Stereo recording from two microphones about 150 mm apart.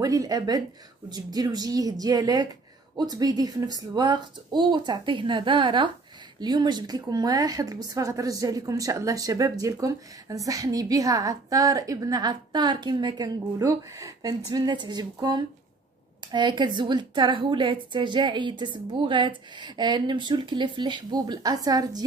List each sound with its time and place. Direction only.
0.0 s a woman's voice: 25° right (ahead or behind)